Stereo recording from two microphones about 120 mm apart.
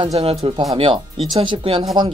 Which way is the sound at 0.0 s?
55° right (ahead or behind).